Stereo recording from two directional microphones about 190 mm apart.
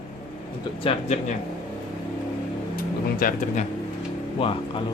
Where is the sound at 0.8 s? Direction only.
35° left (ahead or behind).